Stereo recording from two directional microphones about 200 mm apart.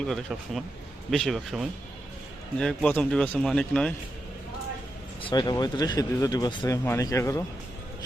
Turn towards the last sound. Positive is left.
turn(degrees=15)  # may be behind; listen again after turning